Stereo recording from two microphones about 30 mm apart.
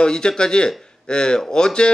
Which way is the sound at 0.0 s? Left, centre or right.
Left.